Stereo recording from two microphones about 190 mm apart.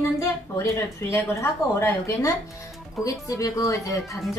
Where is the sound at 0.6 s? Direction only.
15° left (ahead or behind).